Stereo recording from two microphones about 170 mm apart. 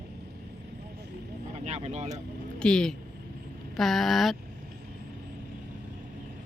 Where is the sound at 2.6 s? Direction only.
5° left (ahead or behind).